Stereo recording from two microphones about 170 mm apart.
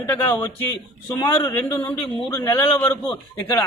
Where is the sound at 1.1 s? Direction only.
25° left (ahead or behind).